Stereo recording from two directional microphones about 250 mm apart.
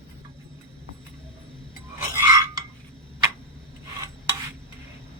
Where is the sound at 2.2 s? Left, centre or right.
Centre.